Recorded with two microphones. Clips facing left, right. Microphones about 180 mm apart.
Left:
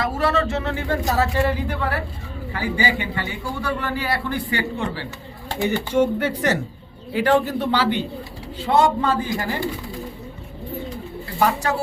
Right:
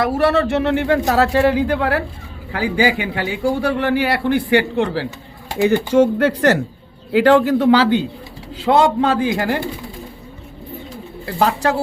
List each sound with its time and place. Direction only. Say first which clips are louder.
0.0 s a man's voice: right 5 dB; 65° right (ahead or behind)